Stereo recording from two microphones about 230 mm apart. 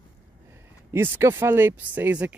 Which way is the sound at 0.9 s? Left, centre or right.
Centre.